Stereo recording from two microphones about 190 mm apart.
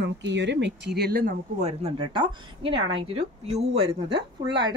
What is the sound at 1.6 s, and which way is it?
Speech, 35° right (ahead or behind).